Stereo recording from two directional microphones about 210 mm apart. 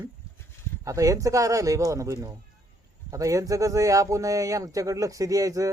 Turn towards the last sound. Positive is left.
turn(degrees=-15)  # may be behind; listen again after turning